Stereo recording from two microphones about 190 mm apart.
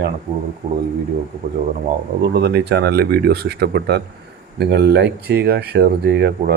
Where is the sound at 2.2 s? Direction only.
60° right (ahead or behind).